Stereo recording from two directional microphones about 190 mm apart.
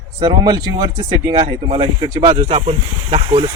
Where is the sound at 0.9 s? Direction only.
25° right (ahead or behind).